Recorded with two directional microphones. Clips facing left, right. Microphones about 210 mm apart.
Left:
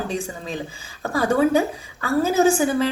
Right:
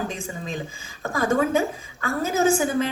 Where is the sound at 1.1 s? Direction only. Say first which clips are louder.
Left 3 dB; 35° left (ahead or behind).